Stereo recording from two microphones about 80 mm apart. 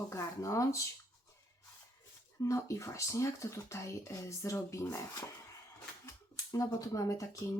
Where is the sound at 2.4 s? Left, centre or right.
Left.